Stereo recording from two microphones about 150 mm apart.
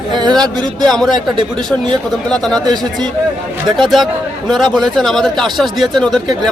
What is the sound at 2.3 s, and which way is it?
Speech, 5° left (ahead or behind).